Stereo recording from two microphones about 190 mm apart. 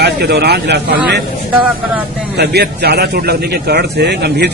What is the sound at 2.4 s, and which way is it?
Speech, 60° right (ahead or behind).